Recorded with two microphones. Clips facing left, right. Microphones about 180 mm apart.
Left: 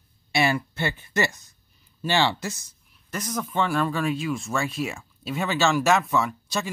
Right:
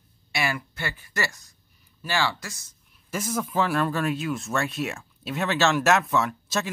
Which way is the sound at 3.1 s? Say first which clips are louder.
Right 2 dB; 5° right (ahead or behind).